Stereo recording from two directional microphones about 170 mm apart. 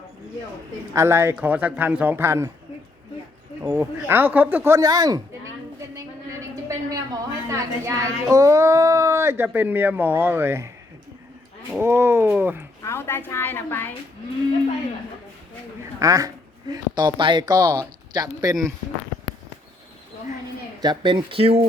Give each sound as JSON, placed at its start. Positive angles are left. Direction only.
{"t": 0.9, "sound": "a woman's voice", "side_deg": -15}
{"t": 3.7, "sound": "a woman's voice", "side_deg": -15}
{"t": 6.7, "sound": "a woman's voice", "side_deg": -20}
{"t": 11.8, "sound": "a woman's voice", "side_deg": -15}
{"t": 12.8, "sound": "a woman's voice", "side_deg": 15}
{"t": 16.0, "sound": "speech", "side_deg": -20}
{"t": 20.8, "sound": "speech", "side_deg": -25}